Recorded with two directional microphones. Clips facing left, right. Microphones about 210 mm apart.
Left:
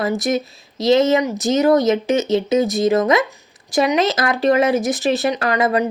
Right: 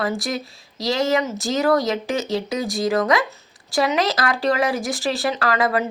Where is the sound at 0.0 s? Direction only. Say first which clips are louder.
Left 5 dB; 20° left (ahead or behind).